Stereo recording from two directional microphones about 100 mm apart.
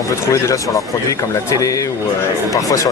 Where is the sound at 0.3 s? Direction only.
30° left (ahead or behind).